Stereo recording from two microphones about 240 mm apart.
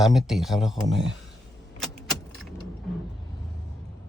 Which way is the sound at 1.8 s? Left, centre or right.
Centre.